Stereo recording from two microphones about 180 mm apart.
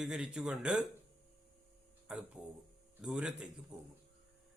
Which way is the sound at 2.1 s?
5° right (ahead or behind).